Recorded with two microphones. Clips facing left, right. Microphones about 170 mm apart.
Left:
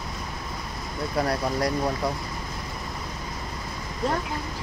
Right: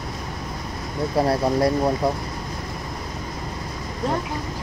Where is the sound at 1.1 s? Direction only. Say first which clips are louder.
Right 6 dB; 30° right (ahead or behind).